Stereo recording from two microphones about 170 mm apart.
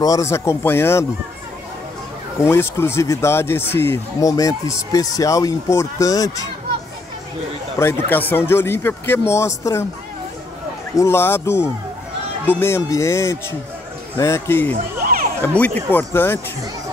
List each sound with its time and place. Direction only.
0.0 s speech: 20° left (ahead or behind)
2.4 s speech: 15° left (ahead or behind)
7.8 s speech: 10° left (ahead or behind)
11.0 s speech: 15° left (ahead or behind)